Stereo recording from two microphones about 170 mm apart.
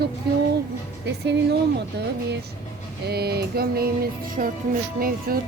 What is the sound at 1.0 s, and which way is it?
Speech, 80° right.